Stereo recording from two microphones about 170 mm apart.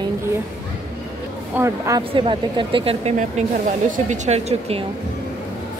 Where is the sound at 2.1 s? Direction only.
30° right (ahead or behind).